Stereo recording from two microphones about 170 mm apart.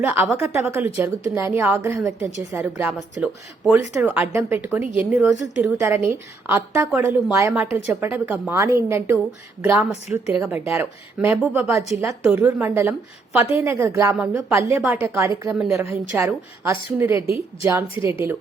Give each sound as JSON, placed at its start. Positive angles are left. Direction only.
{"t": 0.0, "sound": "a woman's voice", "side_deg": -10}
{"t": 15.1, "sound": "a woman's voice", "side_deg": -15}